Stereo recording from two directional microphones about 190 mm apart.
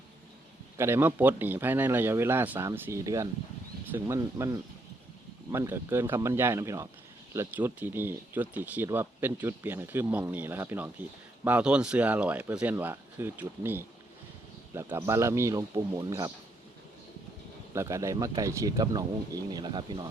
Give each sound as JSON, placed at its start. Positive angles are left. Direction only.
{"t": 0.8, "sound": "speech", "side_deg": -10}
{"t": 17.7, "sound": "speech", "side_deg": -15}